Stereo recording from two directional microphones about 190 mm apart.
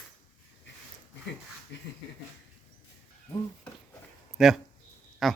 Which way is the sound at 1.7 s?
65° left (ahead or behind).